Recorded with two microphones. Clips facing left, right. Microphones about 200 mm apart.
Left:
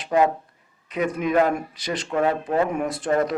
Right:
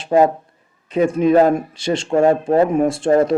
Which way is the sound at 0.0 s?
35° right (ahead or behind).